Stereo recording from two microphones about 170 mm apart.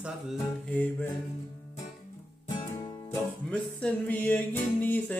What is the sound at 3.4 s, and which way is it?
Music, 5° left (ahead or behind).